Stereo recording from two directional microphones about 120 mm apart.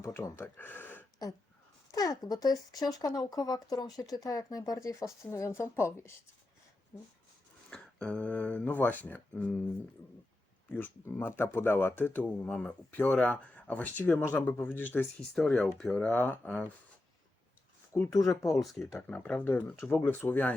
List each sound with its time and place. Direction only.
0.0 s speech: 20° left (ahead or behind)
1.9 s speech: 30° left (ahead or behind)
7.7 s speech: 10° left (ahead or behind)
10.7 s speech: 15° left (ahead or behind)
15.4 s speech: 5° left (ahead or behind)
17.9 s speech: 25° left (ahead or behind)
18.5 s speech: centre (ahead or behind)
18.9 s speech: 15° left (ahead or behind)